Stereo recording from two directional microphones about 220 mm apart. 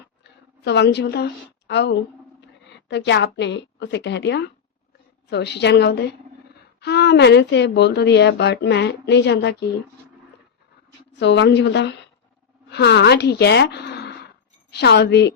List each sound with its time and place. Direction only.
0.6 s a woman's voice: 50° left (ahead or behind)
11.2 s speech: 55° left (ahead or behind)